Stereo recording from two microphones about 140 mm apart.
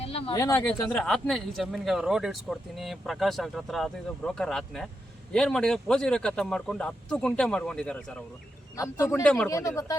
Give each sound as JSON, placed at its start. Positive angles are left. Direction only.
{"t": 0.0, "sound": "a sound", "side_deg": 45}
{"t": 0.3, "sound": "speech", "side_deg": 20}
{"t": 8.7, "sound": "speech", "side_deg": 20}
{"t": 9.2, "sound": "speech", "side_deg": 5}
{"t": 9.5, "sound": "speech", "side_deg": 25}